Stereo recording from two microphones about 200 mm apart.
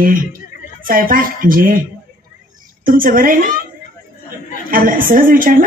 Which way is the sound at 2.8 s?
45° right (ahead or behind).